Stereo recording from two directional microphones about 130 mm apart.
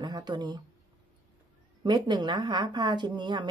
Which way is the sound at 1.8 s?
35° right (ahead or behind).